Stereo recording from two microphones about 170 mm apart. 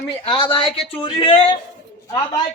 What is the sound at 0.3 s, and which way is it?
Speech, 30° left (ahead or behind).